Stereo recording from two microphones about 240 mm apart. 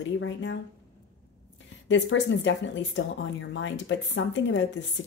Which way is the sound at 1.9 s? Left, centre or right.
Left.